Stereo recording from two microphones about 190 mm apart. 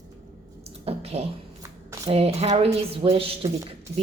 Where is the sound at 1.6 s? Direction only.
15° right (ahead or behind).